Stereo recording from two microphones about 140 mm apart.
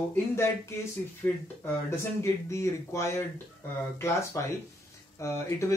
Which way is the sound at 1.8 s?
20° left (ahead or behind).